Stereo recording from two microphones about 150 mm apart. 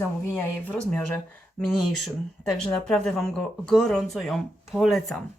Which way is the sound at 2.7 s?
Centre (ahead or behind).